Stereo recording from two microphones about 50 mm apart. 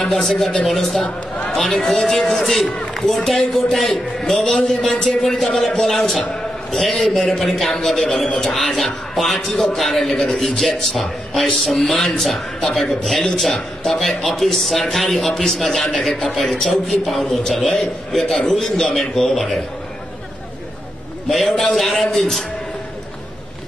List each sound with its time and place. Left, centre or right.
0.0 s a man's voice: centre
9.5 s a man's voice: centre
9.8 s a man's voice: centre
21.3 s speech: centre